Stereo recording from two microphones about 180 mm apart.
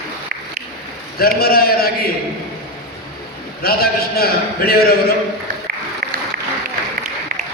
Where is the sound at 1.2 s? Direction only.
55° left (ahead or behind).